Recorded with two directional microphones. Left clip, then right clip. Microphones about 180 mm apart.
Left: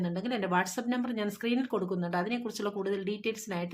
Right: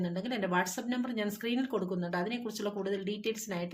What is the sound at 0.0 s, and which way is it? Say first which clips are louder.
Speech: left 2 dB; 25° left (ahead or behind).